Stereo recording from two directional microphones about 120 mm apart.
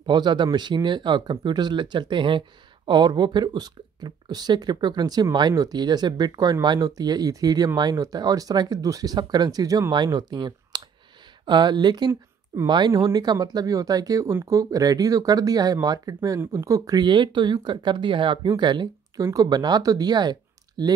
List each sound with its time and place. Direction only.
0.0 s speech: 40° right (ahead or behind)